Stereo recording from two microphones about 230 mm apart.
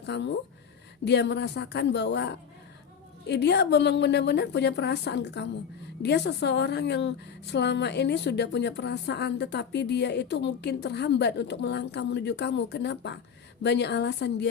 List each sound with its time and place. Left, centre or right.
0.0 s a woman's voice: left